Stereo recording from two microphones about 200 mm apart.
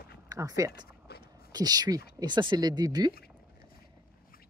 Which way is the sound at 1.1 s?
50° left (ahead or behind).